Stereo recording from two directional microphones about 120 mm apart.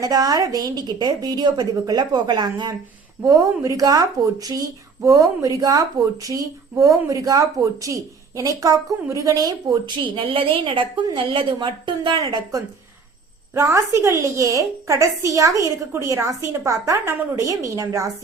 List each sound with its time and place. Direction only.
0.0 s speech: 35° right (ahead or behind)
3.2 s speech: 25° right (ahead or behind)